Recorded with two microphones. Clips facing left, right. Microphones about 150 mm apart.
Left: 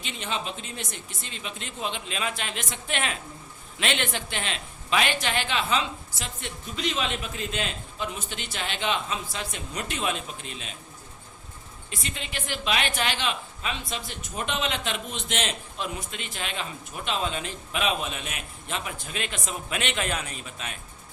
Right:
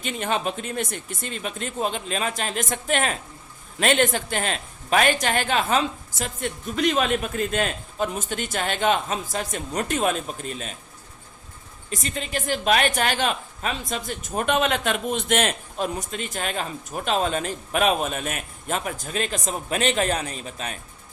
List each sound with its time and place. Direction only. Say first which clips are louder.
0.0 s a woman's voice: right 7 dB; 50° right (ahead or behind)
11.9 s a woman's voice: right 7 dB; 40° right (ahead or behind)